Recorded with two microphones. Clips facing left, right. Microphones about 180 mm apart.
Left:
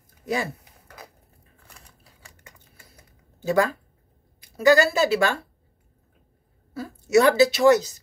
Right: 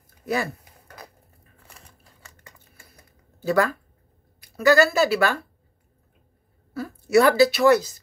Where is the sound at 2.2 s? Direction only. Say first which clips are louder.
Even; 20° left (ahead or behind).